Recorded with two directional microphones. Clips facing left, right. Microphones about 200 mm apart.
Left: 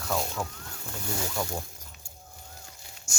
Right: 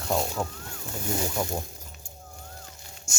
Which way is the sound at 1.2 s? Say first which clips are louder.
Right 2 dB; 20° right (ahead or behind).